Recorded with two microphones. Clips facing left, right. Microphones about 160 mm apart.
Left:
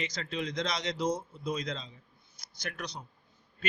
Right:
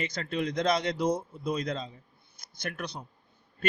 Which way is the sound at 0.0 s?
50° right (ahead or behind).